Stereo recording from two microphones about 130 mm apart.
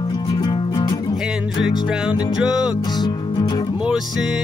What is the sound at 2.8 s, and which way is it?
Music, 30° left (ahead or behind).